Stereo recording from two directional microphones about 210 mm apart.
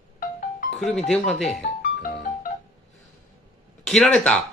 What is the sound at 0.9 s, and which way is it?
Speech, 5° left (ahead or behind).